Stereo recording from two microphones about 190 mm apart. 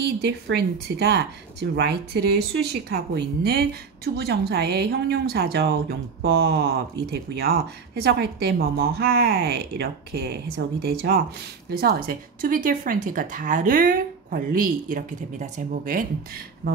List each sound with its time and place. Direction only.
0.2 s speech: 60° right (ahead or behind)